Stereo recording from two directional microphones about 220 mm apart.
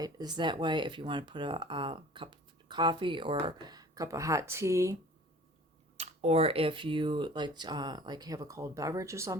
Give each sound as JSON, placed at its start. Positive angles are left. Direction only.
{"t": 0.0, "sound": "speech", "side_deg": -20}
{"t": 6.0, "sound": "speech", "side_deg": -30}